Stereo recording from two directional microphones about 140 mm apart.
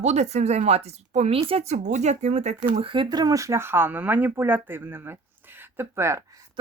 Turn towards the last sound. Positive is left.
turn(degrees=-20)  # may be behind; listen again after turning